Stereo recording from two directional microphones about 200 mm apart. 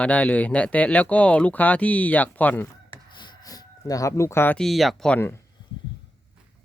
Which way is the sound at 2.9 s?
20° left (ahead or behind).